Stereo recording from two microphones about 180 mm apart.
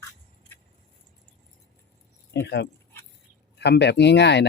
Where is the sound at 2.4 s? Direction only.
70° left (ahead or behind).